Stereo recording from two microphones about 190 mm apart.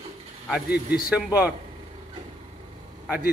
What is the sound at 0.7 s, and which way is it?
Speech, 55° left (ahead or behind).